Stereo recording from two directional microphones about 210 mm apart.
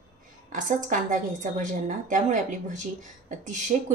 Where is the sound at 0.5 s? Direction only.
40° right (ahead or behind).